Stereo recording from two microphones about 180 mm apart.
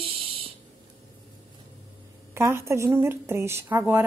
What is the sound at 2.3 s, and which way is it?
A woman's voice, 15° right (ahead or behind).